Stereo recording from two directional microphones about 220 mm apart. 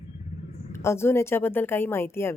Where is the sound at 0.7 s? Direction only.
10° left (ahead or behind).